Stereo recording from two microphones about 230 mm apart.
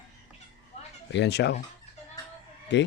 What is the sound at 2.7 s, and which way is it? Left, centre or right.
Speech, left.